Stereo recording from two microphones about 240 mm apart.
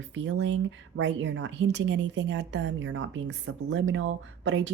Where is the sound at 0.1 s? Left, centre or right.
Right.